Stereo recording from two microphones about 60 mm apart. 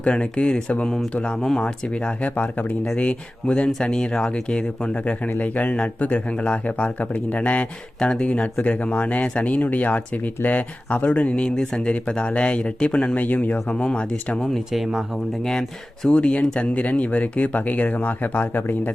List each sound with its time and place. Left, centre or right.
0.0 s speech: centre
1.4 s speech: centre
14.7 s speech: centre
16.0 s speech: centre; by 18.9 s left